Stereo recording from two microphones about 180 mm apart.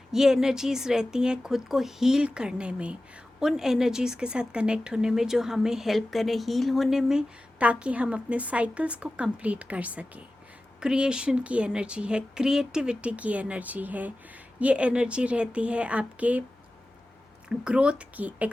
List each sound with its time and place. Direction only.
0.1 s speech: centre (ahead or behind)
17.6 s speech: 5° right (ahead or behind)